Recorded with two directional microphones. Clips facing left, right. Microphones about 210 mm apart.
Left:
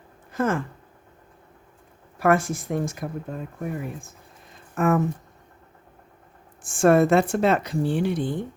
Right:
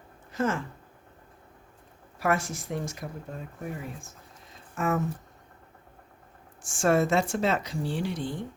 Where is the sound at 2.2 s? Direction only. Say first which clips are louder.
Left 7 dB; 55° left (ahead or behind).